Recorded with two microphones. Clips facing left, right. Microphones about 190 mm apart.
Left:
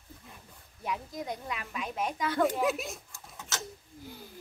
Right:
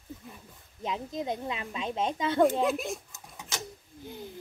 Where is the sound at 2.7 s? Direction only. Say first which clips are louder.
Right 2 dB; centre (ahead or behind).